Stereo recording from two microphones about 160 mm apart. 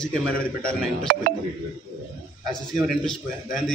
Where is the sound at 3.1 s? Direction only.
Centre (ahead or behind).